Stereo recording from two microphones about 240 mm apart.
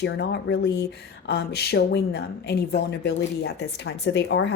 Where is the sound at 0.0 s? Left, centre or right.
Left.